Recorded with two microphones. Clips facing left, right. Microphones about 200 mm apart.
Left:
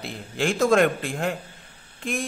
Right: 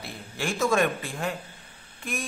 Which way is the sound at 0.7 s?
75° left (ahead or behind).